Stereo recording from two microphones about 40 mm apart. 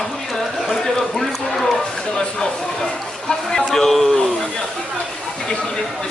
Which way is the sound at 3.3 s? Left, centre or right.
Centre.